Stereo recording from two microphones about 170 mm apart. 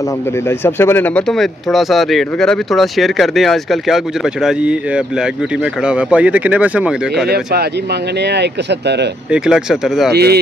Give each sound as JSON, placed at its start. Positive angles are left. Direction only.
{"t": 0.5, "sound": "speech", "side_deg": 15}
{"t": 7.2, "sound": "speech", "side_deg": -70}
{"t": 9.3, "sound": "speech", "side_deg": -5}
{"t": 10.1, "sound": "speech", "side_deg": -70}